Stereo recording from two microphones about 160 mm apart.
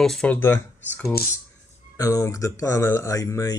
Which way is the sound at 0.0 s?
5° left (ahead or behind).